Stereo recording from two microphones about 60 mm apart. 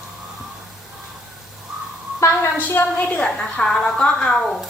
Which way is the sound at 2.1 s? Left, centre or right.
Left.